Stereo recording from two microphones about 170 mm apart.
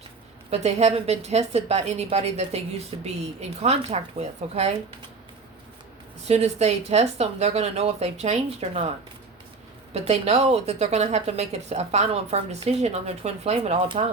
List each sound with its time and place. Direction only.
0.5 s a woman's voice: 40° right (ahead or behind)
6.2 s a woman's voice: 40° right (ahead or behind)
9.9 s a woman's voice: 40° right (ahead or behind)